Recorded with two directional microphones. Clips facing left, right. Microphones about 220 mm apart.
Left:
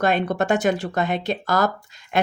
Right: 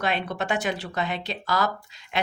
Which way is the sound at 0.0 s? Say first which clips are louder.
Left 7 dB; 45° left (ahead or behind).